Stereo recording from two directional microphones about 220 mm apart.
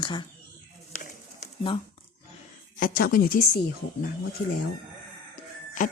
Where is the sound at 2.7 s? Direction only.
40° left (ahead or behind).